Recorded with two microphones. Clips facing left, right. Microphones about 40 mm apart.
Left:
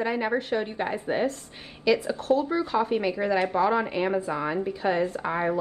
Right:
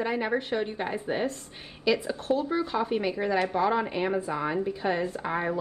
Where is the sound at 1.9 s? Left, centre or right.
Centre.